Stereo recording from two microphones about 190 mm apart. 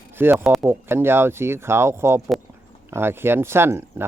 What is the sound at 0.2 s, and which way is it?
Speech, 10° right (ahead or behind).